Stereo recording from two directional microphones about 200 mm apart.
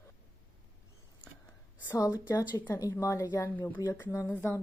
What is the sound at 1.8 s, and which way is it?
A woman's voice, 20° left (ahead or behind).